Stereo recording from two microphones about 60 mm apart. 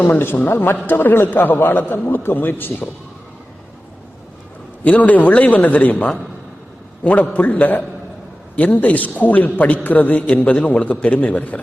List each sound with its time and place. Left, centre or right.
0.0 s a man's voice: left
4.8 s a man's voice: left